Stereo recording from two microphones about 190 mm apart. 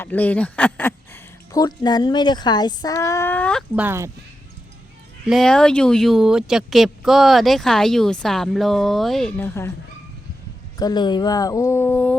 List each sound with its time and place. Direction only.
0.0 s speech: 10° left (ahead or behind)
3.8 s speech: 10° right (ahead or behind)
5.3 s speech: 5° left (ahead or behind)
10.8 s speech: 20° left (ahead or behind)